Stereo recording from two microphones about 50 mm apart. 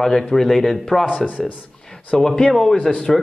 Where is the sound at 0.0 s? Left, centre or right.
Centre.